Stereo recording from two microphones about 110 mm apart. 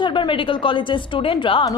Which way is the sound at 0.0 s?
50° left (ahead or behind).